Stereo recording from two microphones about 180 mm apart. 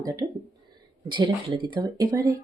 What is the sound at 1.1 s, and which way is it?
Speech, 25° right (ahead or behind).